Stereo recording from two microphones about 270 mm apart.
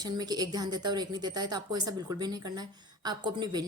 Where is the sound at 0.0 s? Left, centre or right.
Centre.